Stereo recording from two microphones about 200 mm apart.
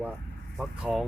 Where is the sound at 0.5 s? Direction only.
Centre (ahead or behind).